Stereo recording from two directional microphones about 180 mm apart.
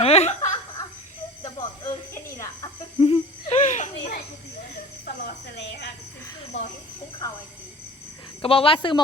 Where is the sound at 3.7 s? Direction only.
40° left (ahead or behind).